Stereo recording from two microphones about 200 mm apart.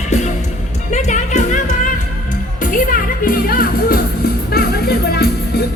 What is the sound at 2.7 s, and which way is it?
Music, 45° left (ahead or behind).